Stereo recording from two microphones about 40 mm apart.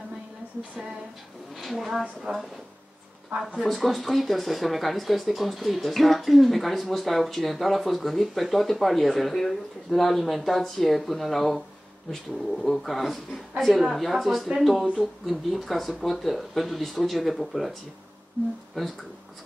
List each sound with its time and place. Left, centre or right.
1.6 s speech: centre
2.3 s a woman's voice: right
3.5 s speech: centre